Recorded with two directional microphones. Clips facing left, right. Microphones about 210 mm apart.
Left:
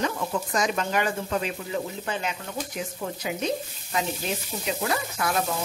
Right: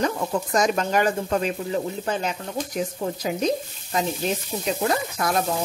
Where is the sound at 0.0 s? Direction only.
40° right (ahead or behind).